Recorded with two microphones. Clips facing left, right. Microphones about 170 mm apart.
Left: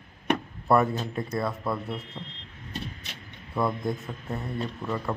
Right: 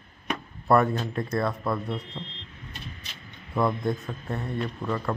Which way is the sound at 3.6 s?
Centre (ahead or behind).